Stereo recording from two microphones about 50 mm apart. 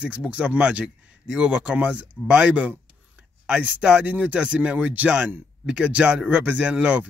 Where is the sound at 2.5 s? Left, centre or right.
Right.